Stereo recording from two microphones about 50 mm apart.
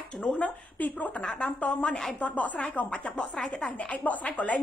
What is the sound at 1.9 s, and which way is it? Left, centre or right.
Speech, centre.